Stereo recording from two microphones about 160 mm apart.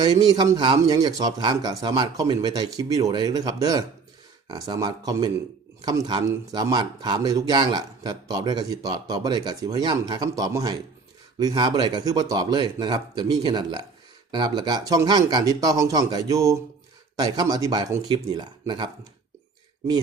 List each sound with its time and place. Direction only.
0.0 s speech: 25° right (ahead or behind)